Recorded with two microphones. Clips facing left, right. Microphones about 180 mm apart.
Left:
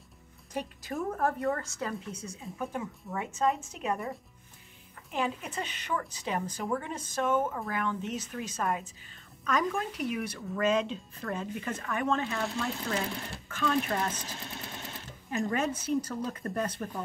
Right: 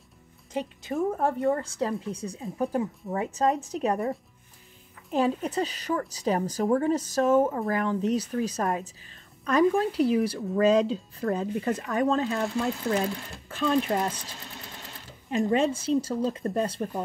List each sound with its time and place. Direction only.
0.5 s a woman's voice: 25° right (ahead or behind); by 4.1 s 40° right (ahead or behind)
5.1 s speech: 40° right (ahead or behind)
13.5 s speech: 30° right (ahead or behind)
15.3 s a woman's voice: 25° right (ahead or behind)